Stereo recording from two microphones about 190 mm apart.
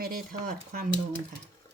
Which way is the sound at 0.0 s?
50° right (ahead or behind).